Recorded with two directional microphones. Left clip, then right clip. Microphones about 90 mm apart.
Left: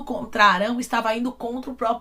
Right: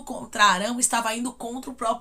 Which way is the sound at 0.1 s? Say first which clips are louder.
Left 2 dB; 30° right (ahead or behind).